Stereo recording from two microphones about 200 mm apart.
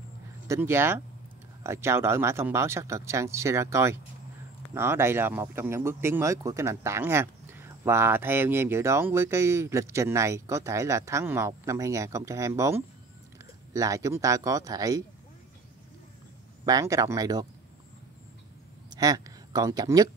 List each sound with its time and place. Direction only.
0.5 s speech: 10° right (ahead or behind)
16.6 s speech: 15° right (ahead or behind)
18.9 s speech: 20° right (ahead or behind)